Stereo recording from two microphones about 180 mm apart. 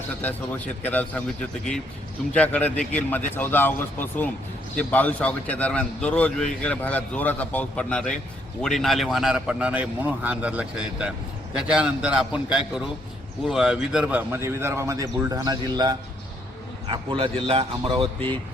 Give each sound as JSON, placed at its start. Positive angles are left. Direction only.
{"t": 0.2, "sound": "a man's voice", "side_deg": 10}
{"t": 2.3, "sound": "a man's voice", "side_deg": 5}